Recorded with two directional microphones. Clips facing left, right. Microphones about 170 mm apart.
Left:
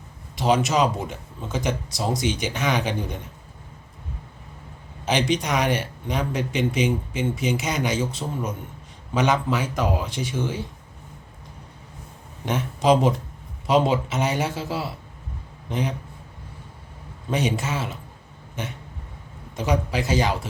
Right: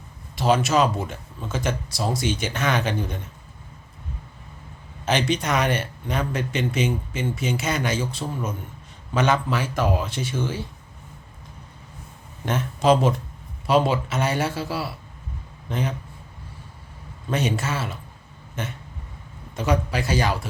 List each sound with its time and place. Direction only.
0.3 s speech: 15° left (ahead or behind)
5.0 s speech: 15° left (ahead or behind)
12.5 s speech: 15° left (ahead or behind)
17.3 s speech: 15° left (ahead or behind)